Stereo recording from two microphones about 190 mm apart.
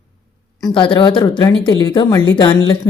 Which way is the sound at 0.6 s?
25° left (ahead or behind).